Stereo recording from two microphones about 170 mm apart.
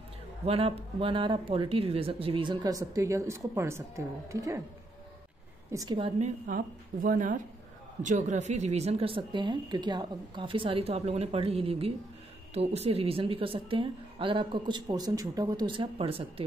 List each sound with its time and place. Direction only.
0.5 s speech: 35° right (ahead or behind); by 4.6 s 20° right (ahead or behind)
5.7 s a woman's voice: 20° right (ahead or behind)
5.9 s a woman's voice: 35° right (ahead or behind)